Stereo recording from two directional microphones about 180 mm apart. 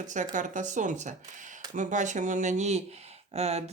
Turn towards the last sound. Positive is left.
turn(degrees=-35)  # may be behind; listen again after turning